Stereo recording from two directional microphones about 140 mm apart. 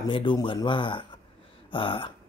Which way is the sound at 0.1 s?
35° left (ahead or behind).